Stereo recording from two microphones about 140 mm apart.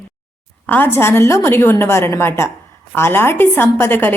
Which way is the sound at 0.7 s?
15° left (ahead or behind).